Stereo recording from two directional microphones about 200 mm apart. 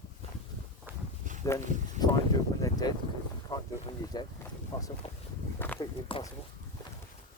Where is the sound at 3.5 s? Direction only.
15° left (ahead or behind).